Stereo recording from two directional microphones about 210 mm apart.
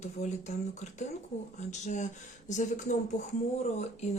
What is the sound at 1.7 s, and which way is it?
Speech, 35° left (ahead or behind).